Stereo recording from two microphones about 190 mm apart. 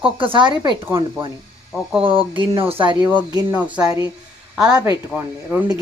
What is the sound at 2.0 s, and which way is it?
Speech, 30° right (ahead or behind).